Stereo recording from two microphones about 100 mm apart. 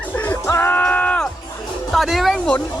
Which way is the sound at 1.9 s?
Centre (ahead or behind).